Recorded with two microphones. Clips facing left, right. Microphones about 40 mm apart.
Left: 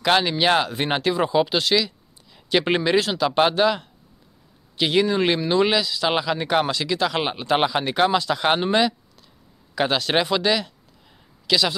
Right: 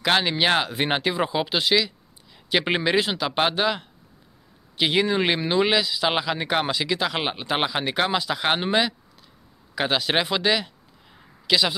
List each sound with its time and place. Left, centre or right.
0.0 s a man's voice: centre